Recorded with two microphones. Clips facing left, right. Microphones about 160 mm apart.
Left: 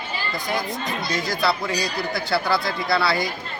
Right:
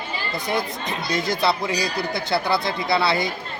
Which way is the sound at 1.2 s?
20° right (ahead or behind).